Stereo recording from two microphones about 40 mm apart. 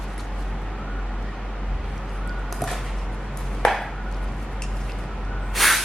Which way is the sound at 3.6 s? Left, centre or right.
Centre.